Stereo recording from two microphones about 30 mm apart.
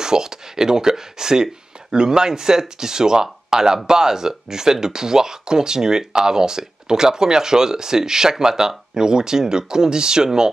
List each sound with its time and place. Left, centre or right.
0.0 s speech: right